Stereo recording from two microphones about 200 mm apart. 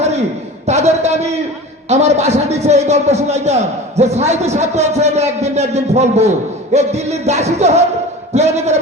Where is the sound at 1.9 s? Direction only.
35° right (ahead or behind).